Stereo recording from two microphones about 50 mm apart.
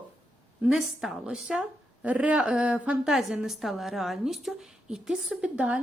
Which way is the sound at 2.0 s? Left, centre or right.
Right.